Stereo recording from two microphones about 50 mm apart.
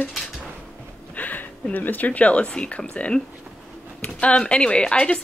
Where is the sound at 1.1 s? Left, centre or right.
Left.